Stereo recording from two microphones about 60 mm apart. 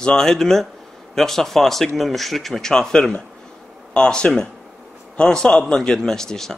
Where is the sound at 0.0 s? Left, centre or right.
Centre.